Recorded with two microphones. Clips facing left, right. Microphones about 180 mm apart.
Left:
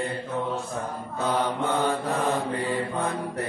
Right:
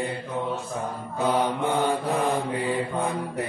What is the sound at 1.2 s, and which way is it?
Mantra, 15° right (ahead or behind).